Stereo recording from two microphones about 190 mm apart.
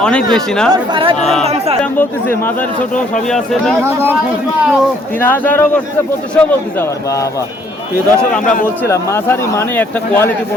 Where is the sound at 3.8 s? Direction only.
10° right (ahead or behind).